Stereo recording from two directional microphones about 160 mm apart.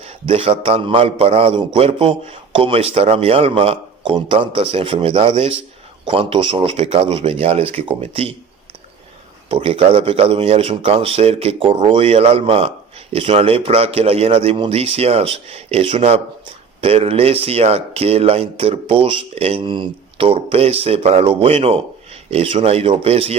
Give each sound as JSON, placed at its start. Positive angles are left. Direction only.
{"t": 0.0, "sound": "a man's voice", "side_deg": -35}
{"t": 9.5, "sound": "speech", "side_deg": -35}